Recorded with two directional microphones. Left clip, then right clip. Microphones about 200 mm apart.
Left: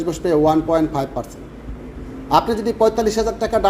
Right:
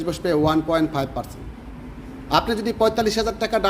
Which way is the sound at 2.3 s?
15° right (ahead or behind).